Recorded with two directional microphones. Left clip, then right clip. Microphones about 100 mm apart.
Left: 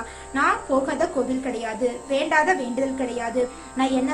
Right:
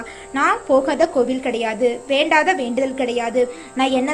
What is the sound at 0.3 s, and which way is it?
Speech, 50° right (ahead or behind).